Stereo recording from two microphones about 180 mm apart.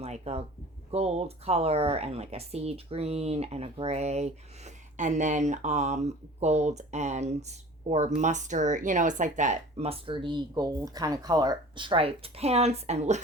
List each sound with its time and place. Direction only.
0.0 s speech: 35° right (ahead or behind)